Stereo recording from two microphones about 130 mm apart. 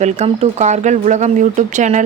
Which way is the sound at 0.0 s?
60° right (ahead or behind).